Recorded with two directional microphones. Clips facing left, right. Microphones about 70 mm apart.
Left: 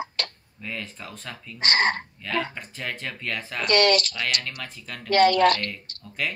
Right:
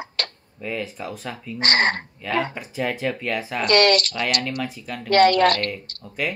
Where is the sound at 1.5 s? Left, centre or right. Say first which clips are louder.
Right 2 dB; right.